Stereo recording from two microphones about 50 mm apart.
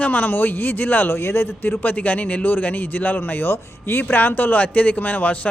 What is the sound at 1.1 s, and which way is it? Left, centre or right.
Speech, left.